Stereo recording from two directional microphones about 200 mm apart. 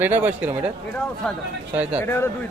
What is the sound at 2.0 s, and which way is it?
Speech, 15° left (ahead or behind).